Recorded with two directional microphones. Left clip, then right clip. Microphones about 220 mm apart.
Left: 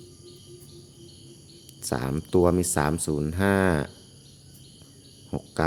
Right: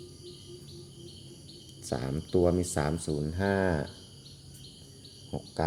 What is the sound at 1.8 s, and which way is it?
Speech, 30° left (ahead or behind).